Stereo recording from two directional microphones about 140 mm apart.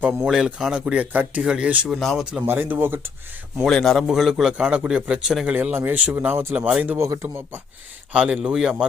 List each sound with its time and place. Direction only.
0.0 s speech: 5° right (ahead or behind)
2.5 s speech: 15° right (ahead or behind)
3.6 s speech: 5° left (ahead or behind); by 7.6 s 20° right (ahead or behind)
8.1 s speech: 5° right (ahead or behind)